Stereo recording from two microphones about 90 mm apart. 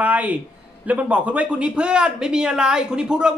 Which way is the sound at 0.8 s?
15° right (ahead or behind).